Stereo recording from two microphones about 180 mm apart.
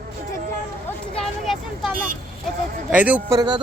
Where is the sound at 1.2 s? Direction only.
Centre (ahead or behind).